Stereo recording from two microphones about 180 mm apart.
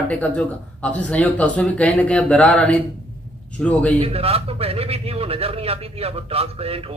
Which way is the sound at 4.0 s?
35° right (ahead or behind).